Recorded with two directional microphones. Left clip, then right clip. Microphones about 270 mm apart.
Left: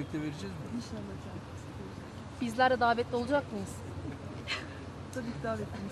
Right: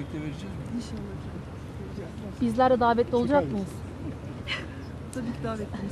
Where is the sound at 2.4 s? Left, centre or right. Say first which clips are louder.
Right 5 dB; right.